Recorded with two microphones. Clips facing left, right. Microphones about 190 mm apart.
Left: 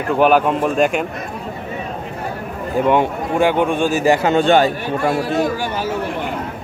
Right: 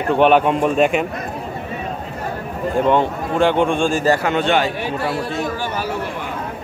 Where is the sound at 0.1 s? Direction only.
5° left (ahead or behind).